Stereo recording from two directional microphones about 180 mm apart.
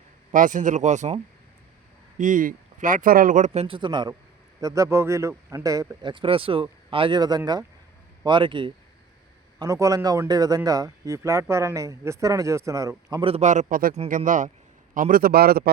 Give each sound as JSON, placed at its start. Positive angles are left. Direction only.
{"t": 0.3, "sound": "a man's voice", "side_deg": -45}
{"t": 13.3, "sound": "a man's voice", "side_deg": -40}